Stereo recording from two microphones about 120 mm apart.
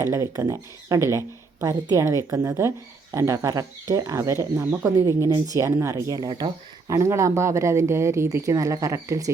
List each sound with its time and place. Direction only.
0.0 s speech: 25° right (ahead or behind)